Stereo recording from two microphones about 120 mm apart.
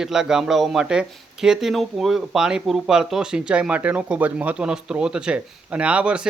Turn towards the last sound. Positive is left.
turn(degrees=-10)  # may be behind; listen again after turning